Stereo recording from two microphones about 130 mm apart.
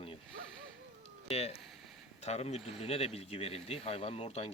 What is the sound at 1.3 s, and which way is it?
Speech, 50° left (ahead or behind).